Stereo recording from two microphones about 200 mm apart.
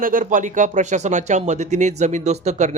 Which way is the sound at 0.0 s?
45° right (ahead or behind).